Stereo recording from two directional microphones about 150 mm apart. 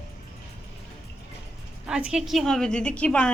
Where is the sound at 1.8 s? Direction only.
5° right (ahead or behind).